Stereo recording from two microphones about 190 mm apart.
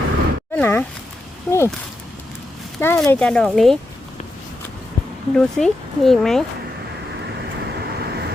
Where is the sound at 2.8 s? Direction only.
10° left (ahead or behind).